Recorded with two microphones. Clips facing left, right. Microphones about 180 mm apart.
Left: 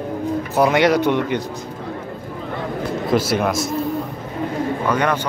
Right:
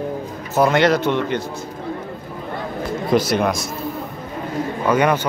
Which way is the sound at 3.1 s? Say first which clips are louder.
Right 1 dB; 5° left (ahead or behind).